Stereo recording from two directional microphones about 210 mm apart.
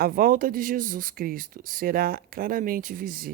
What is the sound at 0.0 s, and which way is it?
Speech, 45° right (ahead or behind).